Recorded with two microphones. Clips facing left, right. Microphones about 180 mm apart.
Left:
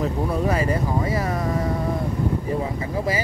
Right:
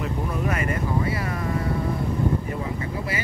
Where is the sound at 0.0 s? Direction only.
30° left (ahead or behind).